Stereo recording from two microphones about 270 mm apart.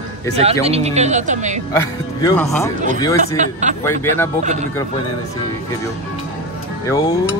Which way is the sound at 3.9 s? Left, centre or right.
Centre.